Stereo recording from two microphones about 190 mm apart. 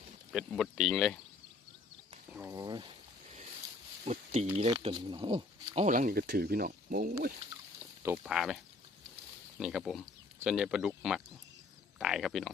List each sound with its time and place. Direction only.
0.3 s speech: centre (ahead or behind)
2.3 s speech: 15° right (ahead or behind)
4.0 s speech: 35° right (ahead or behind)
5.8 s speech: 45° right (ahead or behind)
8.0 s speech: 5° right (ahead or behind)